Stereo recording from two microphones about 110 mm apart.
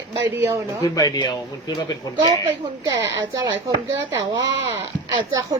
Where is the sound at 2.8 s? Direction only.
30° right (ahead or behind).